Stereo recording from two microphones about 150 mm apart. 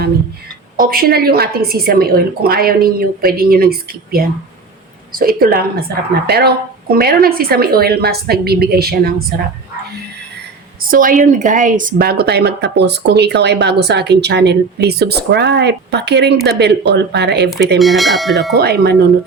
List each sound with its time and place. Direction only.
0.8 s a woman's voice: 75° right (ahead or behind)
10.8 s a woman's voice: 65° right (ahead or behind)
12.2 s speech: 90° right
17.7 s speech: centre (ahead or behind)
18.5 s speech: 90° right